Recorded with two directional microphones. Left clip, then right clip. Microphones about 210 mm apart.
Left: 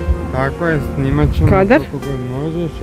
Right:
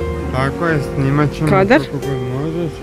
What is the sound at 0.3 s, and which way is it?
Speech, 20° left (ahead or behind).